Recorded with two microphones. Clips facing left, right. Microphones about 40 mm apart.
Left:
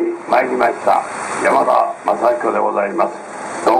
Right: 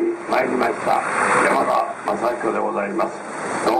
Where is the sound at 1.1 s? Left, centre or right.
Centre.